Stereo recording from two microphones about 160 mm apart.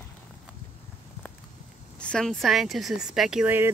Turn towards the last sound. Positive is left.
turn(degrees=-5)  # may be behind; listen again after turning